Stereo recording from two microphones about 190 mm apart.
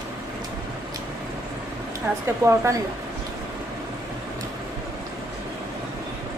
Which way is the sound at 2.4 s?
15° right (ahead or behind).